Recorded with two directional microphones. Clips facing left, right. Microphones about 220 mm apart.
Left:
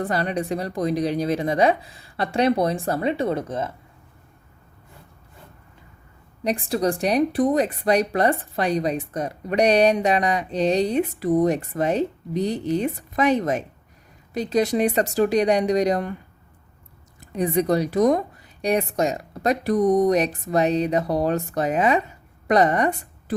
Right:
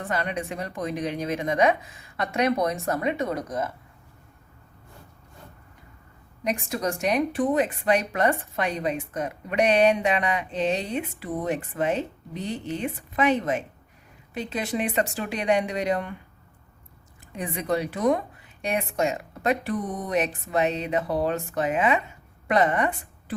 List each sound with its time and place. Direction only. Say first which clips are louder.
0.0 s speech: left 5 dB; 35° left (ahead or behind)
6.4 s speech: left 5 dB; 35° left (ahead or behind)
17.2 s speech: left 11 dB; 40° left (ahead or behind)